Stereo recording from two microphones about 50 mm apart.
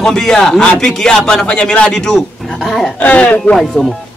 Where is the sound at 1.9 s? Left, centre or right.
Centre.